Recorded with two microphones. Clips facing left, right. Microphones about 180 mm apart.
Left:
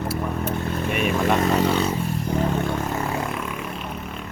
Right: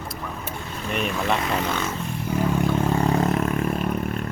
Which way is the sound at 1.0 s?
50° left (ahead or behind).